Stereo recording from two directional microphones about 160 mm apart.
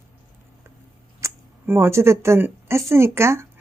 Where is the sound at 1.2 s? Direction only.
15° right (ahead or behind).